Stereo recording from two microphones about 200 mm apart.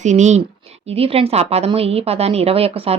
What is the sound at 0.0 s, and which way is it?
A woman's voice, 35° right (ahead or behind).